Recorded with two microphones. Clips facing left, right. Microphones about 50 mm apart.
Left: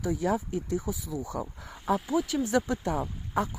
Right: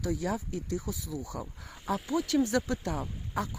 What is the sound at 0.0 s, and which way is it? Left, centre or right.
Speech, left.